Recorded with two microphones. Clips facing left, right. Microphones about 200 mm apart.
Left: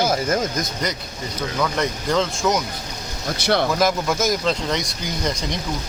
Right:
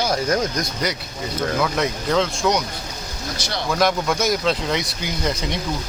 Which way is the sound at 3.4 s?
55° left (ahead or behind).